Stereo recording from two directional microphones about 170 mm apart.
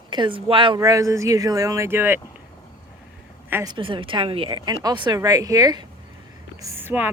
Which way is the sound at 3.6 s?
30° right (ahead or behind).